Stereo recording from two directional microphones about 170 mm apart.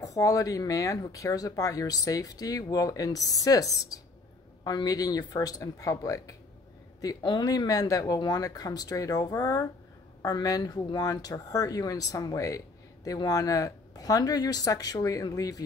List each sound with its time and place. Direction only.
0.0 s speech: 20° left (ahead or behind)